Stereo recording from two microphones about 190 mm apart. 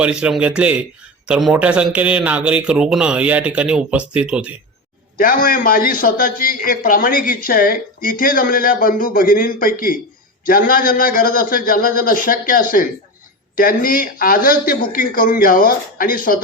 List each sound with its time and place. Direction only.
0.0 s a man's voice: 5° right (ahead or behind)
5.1 s a man's voice: 50° left (ahead or behind)